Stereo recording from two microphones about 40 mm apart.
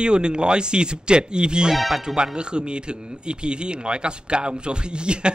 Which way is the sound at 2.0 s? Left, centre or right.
Centre.